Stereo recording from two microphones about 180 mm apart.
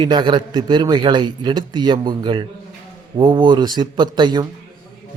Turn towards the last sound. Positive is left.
turn(degrees=-25)  # may be behind; listen again after turning